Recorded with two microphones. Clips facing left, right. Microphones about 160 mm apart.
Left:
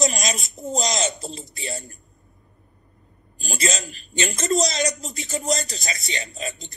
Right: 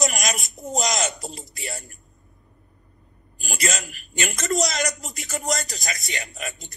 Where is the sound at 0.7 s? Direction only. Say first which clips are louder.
Even; 25° left (ahead or behind).